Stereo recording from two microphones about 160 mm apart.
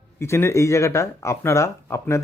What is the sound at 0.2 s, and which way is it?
Speech, 15° left (ahead or behind).